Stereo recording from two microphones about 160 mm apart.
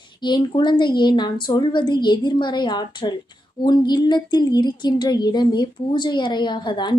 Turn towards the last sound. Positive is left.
turn(degrees=30)  # may be behind; listen again after turning